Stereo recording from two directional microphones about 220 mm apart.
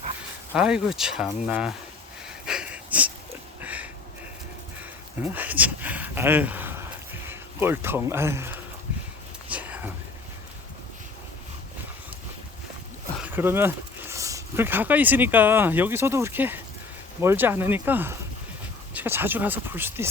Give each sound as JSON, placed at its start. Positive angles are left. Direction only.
{"t": 0.5, "sound": "speech", "side_deg": -5}
{"t": 2.2, "sound": "wheeze", "side_deg": -5}
{"t": 3.6, "sound": "a sound", "side_deg": -5}
{"t": 5.2, "sound": "speech", "side_deg": -10}
{"t": 9.5, "sound": "a sound", "side_deg": -5}
{"t": 13.1, "sound": "speech", "side_deg": -10}